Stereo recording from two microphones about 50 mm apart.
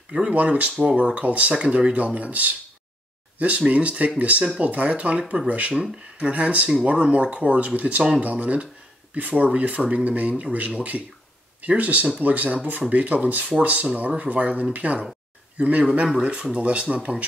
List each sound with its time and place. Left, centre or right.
0.1 s speech: right